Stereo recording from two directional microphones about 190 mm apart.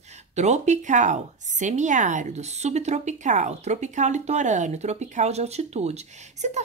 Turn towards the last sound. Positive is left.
turn(degrees=-35)  # may be behind; listen again after turning